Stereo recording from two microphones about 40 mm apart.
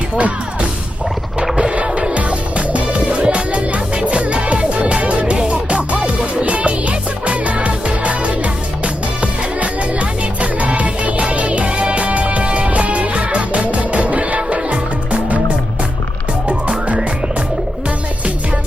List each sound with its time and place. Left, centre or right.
0.2 s speech: right
1.4 s music: right
16.5 s music: right